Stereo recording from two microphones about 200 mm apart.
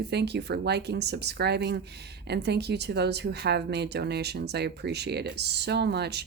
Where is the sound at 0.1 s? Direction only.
55° right (ahead or behind).